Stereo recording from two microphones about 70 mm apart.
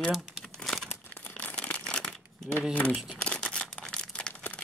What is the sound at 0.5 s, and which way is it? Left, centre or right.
Crumpling, centre.